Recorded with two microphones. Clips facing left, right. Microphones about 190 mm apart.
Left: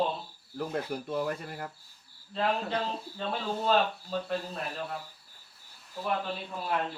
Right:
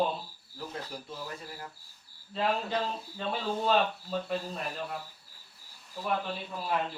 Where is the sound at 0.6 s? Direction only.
60° left (ahead or behind).